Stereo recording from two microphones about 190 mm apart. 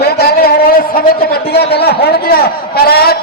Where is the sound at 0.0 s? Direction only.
55° left (ahead or behind).